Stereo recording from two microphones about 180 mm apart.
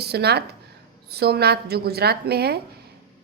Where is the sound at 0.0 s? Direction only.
65° right (ahead or behind).